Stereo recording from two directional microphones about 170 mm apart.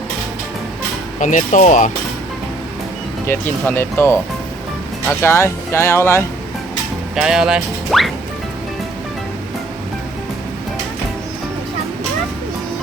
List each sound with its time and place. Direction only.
1.2 s speech: 45° left (ahead or behind)
3.2 s speech: 15° left (ahead or behind)
5.2 s speech: 15° left (ahead or behind)
7.2 s speech: 5° right (ahead or behind)